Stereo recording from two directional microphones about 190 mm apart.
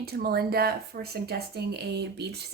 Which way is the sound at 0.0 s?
55° right (ahead or behind).